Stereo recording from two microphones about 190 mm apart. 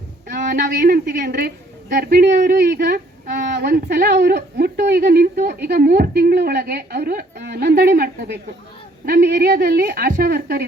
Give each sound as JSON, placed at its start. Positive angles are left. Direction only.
{"t": 0.5, "sound": "a woman's voice", "side_deg": -55}